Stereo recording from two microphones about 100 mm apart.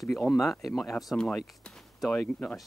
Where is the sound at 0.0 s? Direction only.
Centre (ahead or behind).